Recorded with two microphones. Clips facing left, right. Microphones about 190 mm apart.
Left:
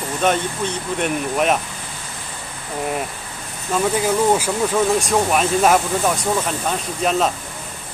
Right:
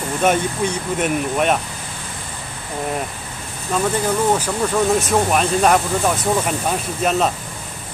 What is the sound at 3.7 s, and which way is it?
Speech, 10° left (ahead or behind).